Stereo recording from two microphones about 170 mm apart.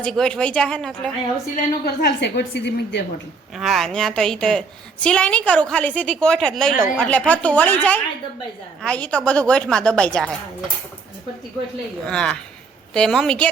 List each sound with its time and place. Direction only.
0.0 s a woman's voice: 5° left (ahead or behind)
1.5 s a woman's voice: 70° left (ahead or behind); by 3.0 s 90° left
3.6 s a woman's voice: centre (ahead or behind)
12.0 s a woman's voice: 5° left (ahead or behind)